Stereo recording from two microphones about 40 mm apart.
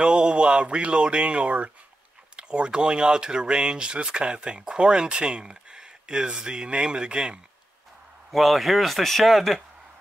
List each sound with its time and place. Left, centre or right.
0.0 s speech: right
8.3 s speech: centre